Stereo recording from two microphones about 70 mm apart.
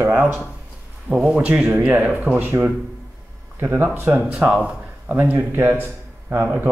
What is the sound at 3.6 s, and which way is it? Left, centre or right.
Speech, right.